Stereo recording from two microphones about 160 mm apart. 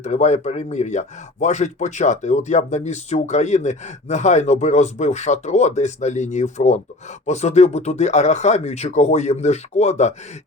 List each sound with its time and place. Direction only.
0.0 s speech: 45° left (ahead or behind)